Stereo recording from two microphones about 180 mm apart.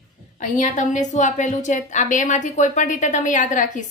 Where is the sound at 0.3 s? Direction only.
45° left (ahead or behind).